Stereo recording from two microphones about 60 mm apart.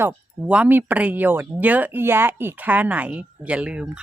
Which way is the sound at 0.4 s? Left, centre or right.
Right.